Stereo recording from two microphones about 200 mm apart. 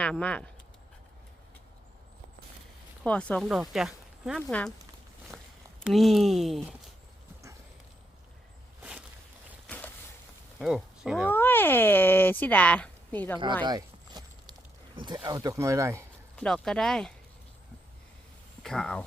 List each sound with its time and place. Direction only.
0.0 s speech: 5° left (ahead or behind)
3.0 s speech: 5° left (ahead or behind)
5.8 s speech: centre (ahead or behind)
8.8 s a sound: 5° right (ahead or behind)
9.6 s a sound: 5° left (ahead or behind)
10.6 s speech: 5° right (ahead or behind)
11.3 s speech: 10° left (ahead or behind)
13.7 s a sound: 20° right (ahead or behind)
14.9 s speech: 20° right (ahead or behind)
16.3 s speech: 5° left (ahead or behind)
18.6 s speech: 5° left (ahead or behind)